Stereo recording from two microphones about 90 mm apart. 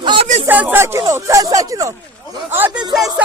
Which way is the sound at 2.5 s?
25° right (ahead or behind).